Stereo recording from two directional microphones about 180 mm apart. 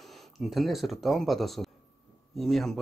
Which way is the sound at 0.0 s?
Centre (ahead or behind).